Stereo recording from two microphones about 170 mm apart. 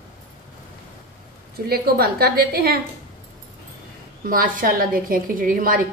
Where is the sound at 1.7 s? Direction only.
65° right (ahead or behind).